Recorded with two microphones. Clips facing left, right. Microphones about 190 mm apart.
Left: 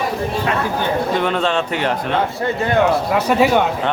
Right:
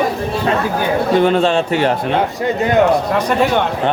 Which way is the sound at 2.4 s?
15° right (ahead or behind).